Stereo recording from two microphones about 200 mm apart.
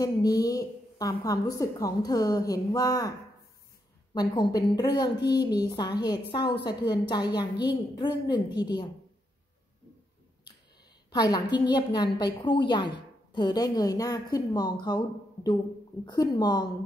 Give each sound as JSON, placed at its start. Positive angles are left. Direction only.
{"t": 0.0, "sound": "a woman's voice", "side_deg": 20}
{"t": 4.1, "sound": "a woman's voice", "side_deg": 20}
{"t": 11.1, "sound": "a woman's voice", "side_deg": 20}
{"t": 16.1, "sound": "a woman's voice", "side_deg": 20}